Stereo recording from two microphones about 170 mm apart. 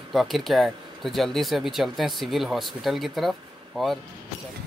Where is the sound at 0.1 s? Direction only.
Centre (ahead or behind).